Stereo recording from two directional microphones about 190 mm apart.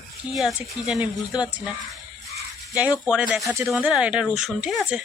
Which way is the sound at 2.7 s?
5° right (ahead or behind).